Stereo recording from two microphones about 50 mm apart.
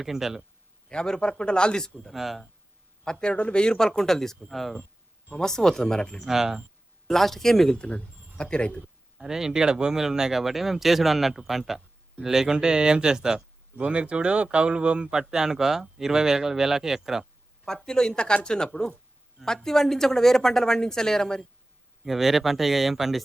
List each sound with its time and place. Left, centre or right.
0.0 s speech: centre
0.9 s a woman's voice: centre
2.1 s speech: centre
3.0 s a woman's voice: centre
6.2 s speech: centre
7.1 s a woman's voice: centre
7.8 s speech: left
9.1 s speech: centre
13.7 s speech: right; by 17.2 s centre
17.8 s a woman's voice: centre
22.0 s speech: centre